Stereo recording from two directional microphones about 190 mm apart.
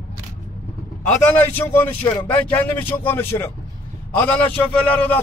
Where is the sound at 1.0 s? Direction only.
10° left (ahead or behind).